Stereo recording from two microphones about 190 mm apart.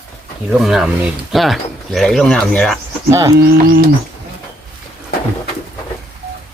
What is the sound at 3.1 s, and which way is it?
Speech, 15° right (ahead or behind).